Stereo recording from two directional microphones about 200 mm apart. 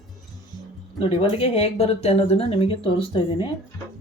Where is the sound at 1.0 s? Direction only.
25° left (ahead or behind).